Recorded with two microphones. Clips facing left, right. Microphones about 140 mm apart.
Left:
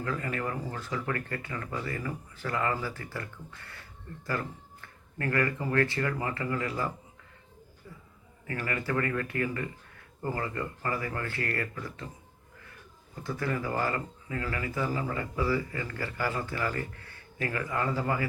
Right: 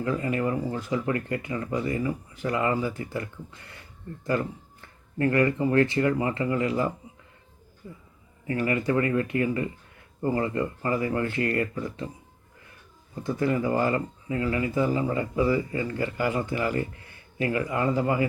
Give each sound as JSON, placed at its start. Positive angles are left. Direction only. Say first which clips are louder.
{"t": 0.0, "sound": "speech", "louder": "right 6 dB", "side_deg": -20}
{"t": 13.2, "sound": "speech", "louder": "right 7 dB", "side_deg": -20}